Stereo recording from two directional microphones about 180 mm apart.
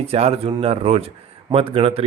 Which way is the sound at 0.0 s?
35° right (ahead or behind).